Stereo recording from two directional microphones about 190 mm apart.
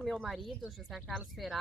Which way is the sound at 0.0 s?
Centre (ahead or behind).